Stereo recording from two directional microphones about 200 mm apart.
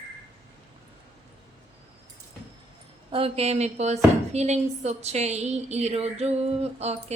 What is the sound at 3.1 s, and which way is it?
Speech, 30° right (ahead or behind).